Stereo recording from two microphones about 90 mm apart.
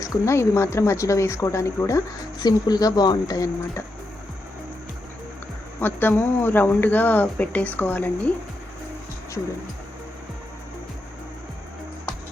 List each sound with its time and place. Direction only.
0.0 s a woman's voice: 30° left (ahead or behind)
5.8 s speech: 20° left (ahead or behind)